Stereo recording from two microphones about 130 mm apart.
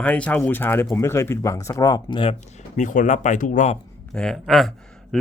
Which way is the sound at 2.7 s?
75° left (ahead or behind).